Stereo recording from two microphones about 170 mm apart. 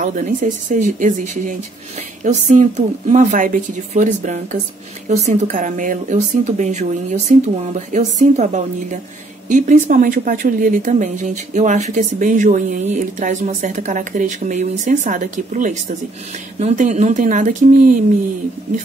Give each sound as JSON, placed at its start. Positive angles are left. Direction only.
{"t": 0.0, "sound": "speech", "side_deg": -50}